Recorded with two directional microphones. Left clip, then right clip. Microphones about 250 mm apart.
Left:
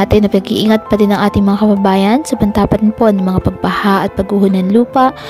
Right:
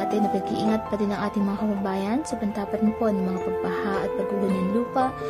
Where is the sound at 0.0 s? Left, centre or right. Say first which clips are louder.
Left 12 dB; left.